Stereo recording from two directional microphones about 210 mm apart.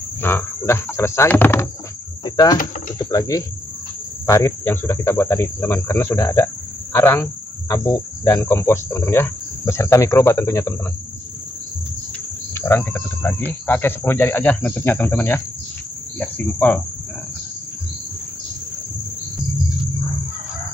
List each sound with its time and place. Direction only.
0.2 s speech: 10° left (ahead or behind)
12.5 s speech: 10° left (ahead or behind)